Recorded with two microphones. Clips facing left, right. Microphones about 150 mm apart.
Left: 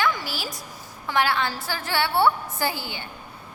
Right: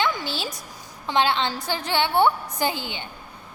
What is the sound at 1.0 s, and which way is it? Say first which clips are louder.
A woman's voice: right 1 dB; 20° right (ahead or behind).